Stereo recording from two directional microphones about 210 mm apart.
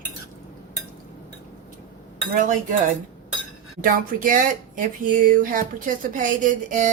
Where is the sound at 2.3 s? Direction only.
40° right (ahead or behind).